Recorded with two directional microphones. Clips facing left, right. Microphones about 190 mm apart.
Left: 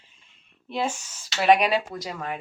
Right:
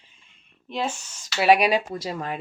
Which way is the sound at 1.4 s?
10° right (ahead or behind).